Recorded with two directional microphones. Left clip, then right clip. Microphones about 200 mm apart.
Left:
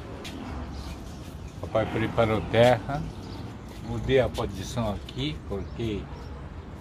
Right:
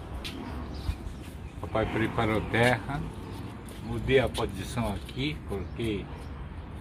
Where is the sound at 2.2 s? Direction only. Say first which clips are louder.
Left 6 dB; 35° left (ahead or behind).